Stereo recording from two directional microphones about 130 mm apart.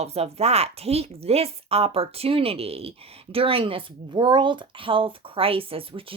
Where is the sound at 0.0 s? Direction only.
55° right (ahead or behind).